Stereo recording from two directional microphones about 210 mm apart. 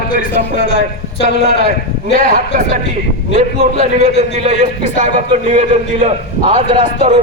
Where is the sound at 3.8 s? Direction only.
30° right (ahead or behind).